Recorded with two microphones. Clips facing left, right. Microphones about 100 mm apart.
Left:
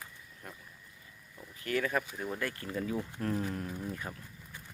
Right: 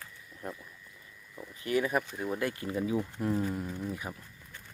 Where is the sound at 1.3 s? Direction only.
20° right (ahead or behind).